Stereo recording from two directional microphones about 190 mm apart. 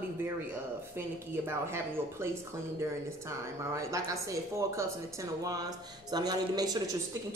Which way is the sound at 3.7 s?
15° right (ahead or behind).